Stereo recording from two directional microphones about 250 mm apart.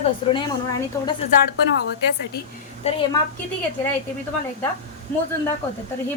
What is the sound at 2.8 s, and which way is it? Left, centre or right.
Speech, centre.